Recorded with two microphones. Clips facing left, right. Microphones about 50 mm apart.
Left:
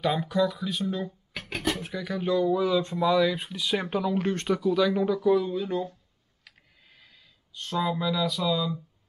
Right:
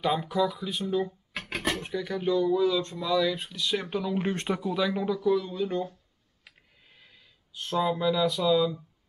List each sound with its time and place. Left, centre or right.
0.0 s speech: centre
1.5 s a sound: right
1.8 s speech: centre
2.4 s speech: centre
4.2 s speech: centre
6.4 s a sound: centre